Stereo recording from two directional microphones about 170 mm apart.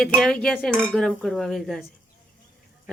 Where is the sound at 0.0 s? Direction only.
5° left (ahead or behind).